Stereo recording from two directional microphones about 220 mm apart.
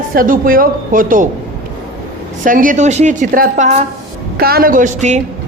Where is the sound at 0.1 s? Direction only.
40° right (ahead or behind).